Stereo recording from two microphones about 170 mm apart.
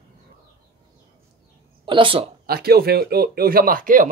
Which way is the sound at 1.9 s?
30° right (ahead or behind).